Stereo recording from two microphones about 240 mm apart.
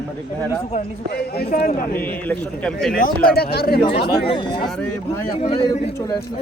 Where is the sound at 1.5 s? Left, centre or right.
Left.